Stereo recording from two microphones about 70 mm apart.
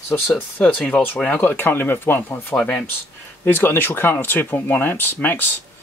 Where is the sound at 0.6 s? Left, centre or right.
Left.